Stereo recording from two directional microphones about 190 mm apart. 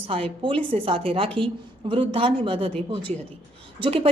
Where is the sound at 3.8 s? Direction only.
30° right (ahead or behind).